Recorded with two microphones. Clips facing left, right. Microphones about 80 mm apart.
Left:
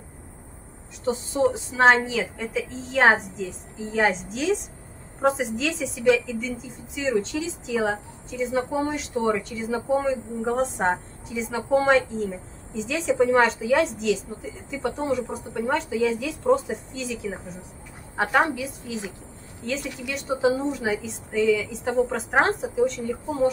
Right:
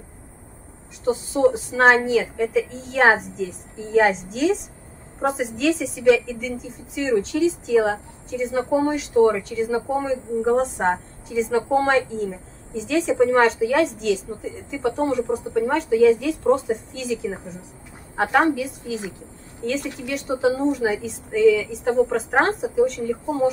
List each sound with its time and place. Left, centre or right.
1.0 s a woman's voice: centre
18.4 s a woman's voice: centre